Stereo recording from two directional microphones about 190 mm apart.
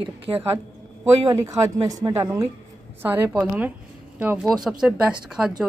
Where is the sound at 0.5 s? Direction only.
15° right (ahead or behind).